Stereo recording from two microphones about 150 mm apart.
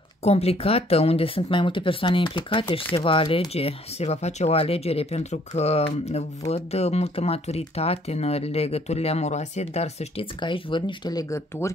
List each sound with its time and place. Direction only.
0.2 s speech: 45° left (ahead or behind)
10.4 s speech: 30° left (ahead or behind)